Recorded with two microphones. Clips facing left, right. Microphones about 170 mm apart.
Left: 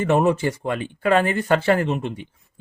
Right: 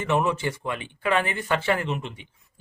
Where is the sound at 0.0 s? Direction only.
45° left (ahead or behind).